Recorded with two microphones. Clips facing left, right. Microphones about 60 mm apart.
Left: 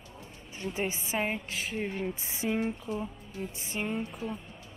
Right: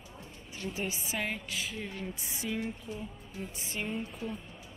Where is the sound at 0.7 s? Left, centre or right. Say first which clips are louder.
Left 5 dB; left.